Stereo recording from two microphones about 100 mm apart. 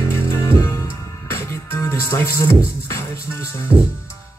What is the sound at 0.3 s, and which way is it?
Music, 25° left (ahead or behind).